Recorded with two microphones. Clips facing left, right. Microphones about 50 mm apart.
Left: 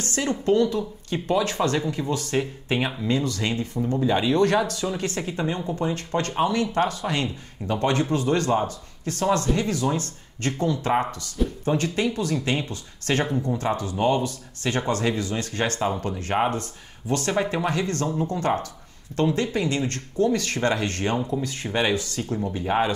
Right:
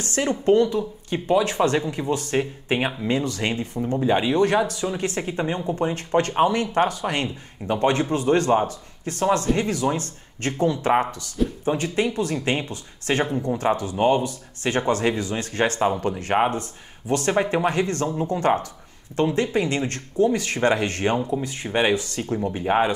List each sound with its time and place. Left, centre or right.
0.1 s speech: right
11.1 s speech: left
11.6 s speech: centre